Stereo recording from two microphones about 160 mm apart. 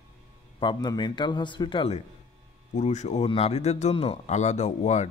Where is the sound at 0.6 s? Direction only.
25° left (ahead or behind).